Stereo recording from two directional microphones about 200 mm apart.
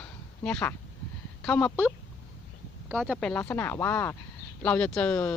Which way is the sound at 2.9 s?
Centre (ahead or behind).